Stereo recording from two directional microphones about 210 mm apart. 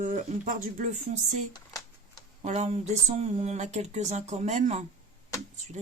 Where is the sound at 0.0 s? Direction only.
35° right (ahead or behind).